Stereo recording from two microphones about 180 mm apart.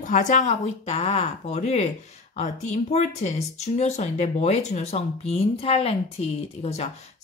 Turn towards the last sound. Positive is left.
turn(degrees=35)  # may be behind; listen again after turning